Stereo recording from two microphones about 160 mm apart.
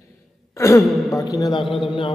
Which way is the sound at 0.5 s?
20° left (ahead or behind).